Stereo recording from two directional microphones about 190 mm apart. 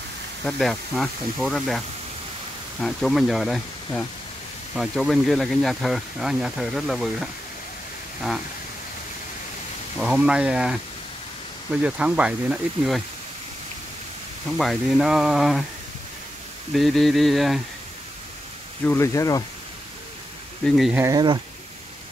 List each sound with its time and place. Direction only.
0.5 s speech: centre (ahead or behind)
2.8 s speech: centre (ahead or behind)
9.9 s speech: 5° right (ahead or behind)
14.6 s speech: centre (ahead or behind)
16.7 s speech: centre (ahead or behind)
18.9 s speech: 15° left (ahead or behind)
20.6 s speech: centre (ahead or behind)
21.0 s speech: 20° right (ahead or behind)